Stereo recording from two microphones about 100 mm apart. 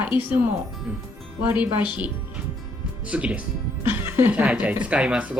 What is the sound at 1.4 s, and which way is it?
Speech, 15° right (ahead or behind).